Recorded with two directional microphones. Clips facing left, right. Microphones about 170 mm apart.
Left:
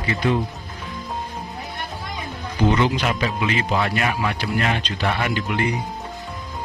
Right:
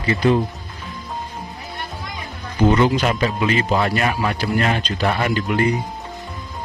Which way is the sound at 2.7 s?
40° right (ahead or behind).